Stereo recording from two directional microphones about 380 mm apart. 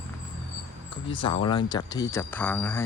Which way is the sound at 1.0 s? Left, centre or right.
Centre.